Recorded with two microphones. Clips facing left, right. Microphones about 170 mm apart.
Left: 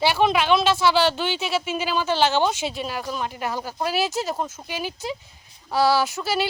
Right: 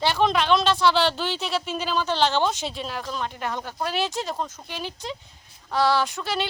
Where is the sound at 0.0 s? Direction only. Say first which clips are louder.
Left 2 dB; 5° left (ahead or behind).